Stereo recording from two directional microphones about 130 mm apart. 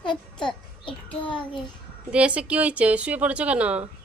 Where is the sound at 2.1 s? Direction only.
10° right (ahead or behind).